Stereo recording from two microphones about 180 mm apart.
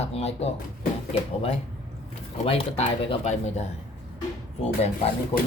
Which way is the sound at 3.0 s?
40° left (ahead or behind).